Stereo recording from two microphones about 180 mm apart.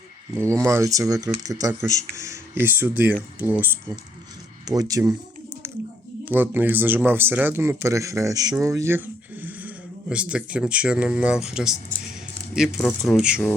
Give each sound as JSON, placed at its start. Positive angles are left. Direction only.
{"t": 0.3, "sound": "speech", "side_deg": -15}
{"t": 4.6, "sound": "speech", "side_deg": -20}
{"t": 5.6, "sound": "a sound", "side_deg": -15}
{"t": 6.2, "sound": "speech", "side_deg": -10}